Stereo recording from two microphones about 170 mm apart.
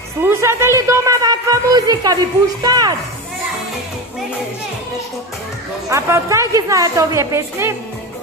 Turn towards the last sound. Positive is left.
turn(degrees=-15)  # may be behind; listen again after turning